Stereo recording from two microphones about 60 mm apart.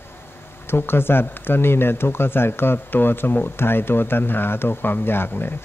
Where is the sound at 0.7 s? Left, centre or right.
Left.